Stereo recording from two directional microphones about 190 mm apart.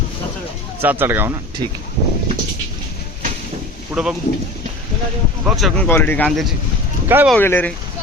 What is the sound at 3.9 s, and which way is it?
Speech, 5° right (ahead or behind).